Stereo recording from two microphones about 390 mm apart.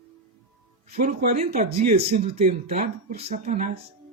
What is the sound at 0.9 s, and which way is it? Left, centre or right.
Speech, right.